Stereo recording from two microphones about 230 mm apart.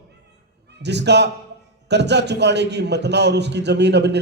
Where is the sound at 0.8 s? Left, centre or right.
Right.